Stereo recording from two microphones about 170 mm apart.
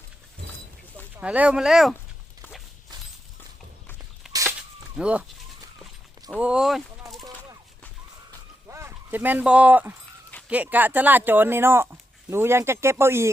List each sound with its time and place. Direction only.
1.2 s speech: 10° right (ahead or behind)
4.3 s chicken: 20° right (ahead or behind)
4.9 s speech: 5° right (ahead or behind)
6.4 s speech: 5° right (ahead or behind)
8.6 s speech: 15° right (ahead or behind)